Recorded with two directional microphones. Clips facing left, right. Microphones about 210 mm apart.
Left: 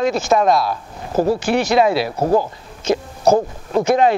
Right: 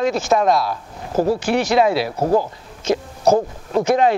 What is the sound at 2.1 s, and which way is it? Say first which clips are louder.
A man's voice: left 1 dB; 35° left (ahead or behind).